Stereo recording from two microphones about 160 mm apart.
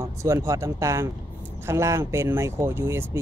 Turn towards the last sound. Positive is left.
turn(degrees=-15)  # may be behind; listen again after turning